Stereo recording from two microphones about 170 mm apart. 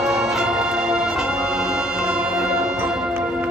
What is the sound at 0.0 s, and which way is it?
Music, 5° right (ahead or behind).